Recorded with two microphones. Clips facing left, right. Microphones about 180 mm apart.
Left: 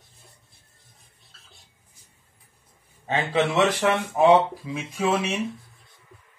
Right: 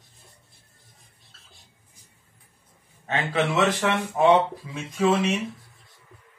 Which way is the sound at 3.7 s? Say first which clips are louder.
Left 2 dB; 10° left (ahead or behind).